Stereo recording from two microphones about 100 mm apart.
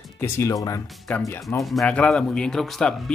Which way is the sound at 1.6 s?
Centre (ahead or behind).